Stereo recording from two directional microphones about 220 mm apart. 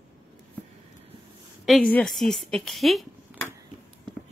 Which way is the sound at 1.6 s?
Centre (ahead or behind).